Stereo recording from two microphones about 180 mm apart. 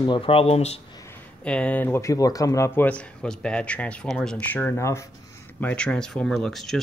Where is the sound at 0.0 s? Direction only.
30° left (ahead or behind).